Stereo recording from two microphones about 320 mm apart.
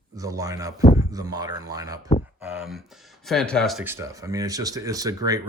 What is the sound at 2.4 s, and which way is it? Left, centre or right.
Speech, centre.